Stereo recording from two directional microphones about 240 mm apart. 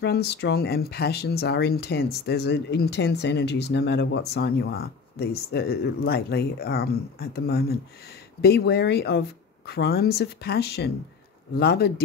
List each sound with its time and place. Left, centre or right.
0.0 s speech: left